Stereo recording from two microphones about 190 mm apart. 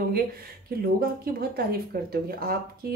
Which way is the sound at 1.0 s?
55° right (ahead or behind).